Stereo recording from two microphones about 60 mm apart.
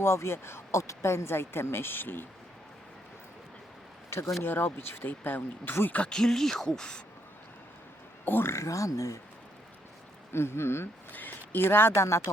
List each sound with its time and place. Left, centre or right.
0.0 s speech: left
4.4 s speech: left
5.9 s speech: left
6.1 s speech: centre
8.2 s speech: left
8.6 s speech: left
10.3 s speech: left